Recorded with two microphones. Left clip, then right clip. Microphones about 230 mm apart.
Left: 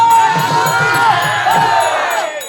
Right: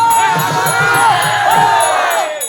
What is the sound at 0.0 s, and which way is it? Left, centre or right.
Music, right.